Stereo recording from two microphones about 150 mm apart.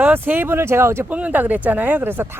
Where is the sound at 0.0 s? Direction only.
10° right (ahead or behind).